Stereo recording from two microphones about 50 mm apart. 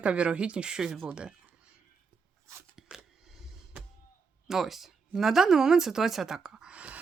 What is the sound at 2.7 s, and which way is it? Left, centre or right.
Scissors, centre.